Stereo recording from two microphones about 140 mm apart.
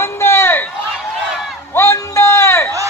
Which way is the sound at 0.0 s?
15° left (ahead or behind).